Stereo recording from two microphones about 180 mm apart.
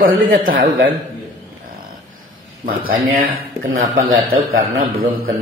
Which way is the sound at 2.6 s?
55° right (ahead or behind).